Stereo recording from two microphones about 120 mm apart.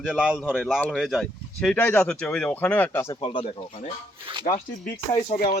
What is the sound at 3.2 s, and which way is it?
Speech, 45° left (ahead or behind).